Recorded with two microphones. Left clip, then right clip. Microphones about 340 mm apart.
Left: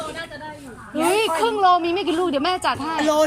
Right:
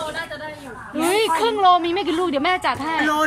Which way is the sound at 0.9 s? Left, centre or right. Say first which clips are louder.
Even; centre.